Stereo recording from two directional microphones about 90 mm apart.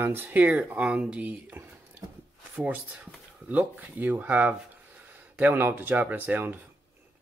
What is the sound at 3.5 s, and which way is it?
Speech, 15° right (ahead or behind).